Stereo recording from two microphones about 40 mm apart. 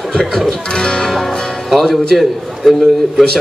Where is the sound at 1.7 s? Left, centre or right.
Centre.